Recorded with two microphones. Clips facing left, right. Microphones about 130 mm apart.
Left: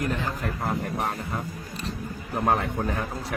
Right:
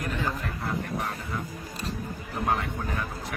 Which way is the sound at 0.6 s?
40° left (ahead or behind).